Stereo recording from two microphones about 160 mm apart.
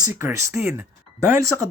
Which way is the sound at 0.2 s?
15° right (ahead or behind).